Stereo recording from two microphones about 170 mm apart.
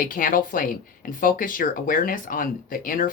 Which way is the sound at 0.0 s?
55° left (ahead or behind).